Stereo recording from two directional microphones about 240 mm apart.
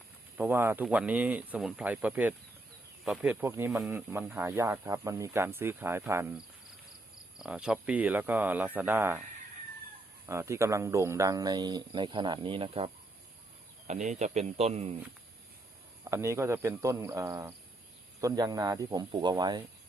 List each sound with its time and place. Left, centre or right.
0.3 s speech: centre
10.2 s speech: centre
16.0 s speech: centre